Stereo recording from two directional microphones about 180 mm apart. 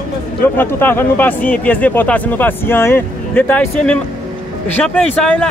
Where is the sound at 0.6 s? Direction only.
10° left (ahead or behind).